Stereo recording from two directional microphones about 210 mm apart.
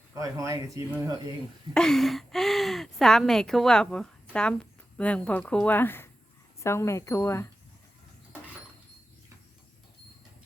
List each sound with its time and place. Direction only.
0.1 s speech: 15° right (ahead or behind)
1.7 s a woman's voice: 5° left (ahead or behind)